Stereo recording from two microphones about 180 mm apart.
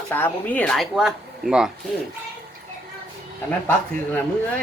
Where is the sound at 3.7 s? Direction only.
5° left (ahead or behind).